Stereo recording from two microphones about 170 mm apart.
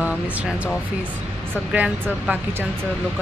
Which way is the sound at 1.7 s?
10° right (ahead or behind).